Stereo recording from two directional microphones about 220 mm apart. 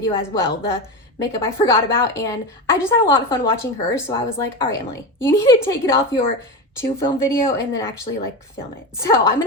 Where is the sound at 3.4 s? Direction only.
10° left (ahead or behind).